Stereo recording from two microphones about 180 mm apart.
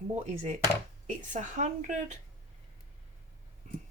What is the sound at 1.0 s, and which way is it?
A woman's voice, 45° right (ahead or behind).